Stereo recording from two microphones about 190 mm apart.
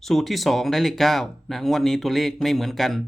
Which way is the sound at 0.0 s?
Centre (ahead or behind).